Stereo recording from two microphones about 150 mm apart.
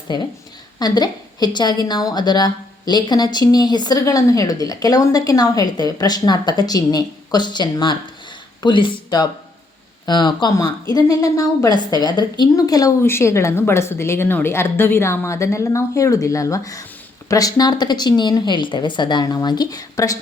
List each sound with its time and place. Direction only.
0.1 s a woman's voice: 30° left (ahead or behind)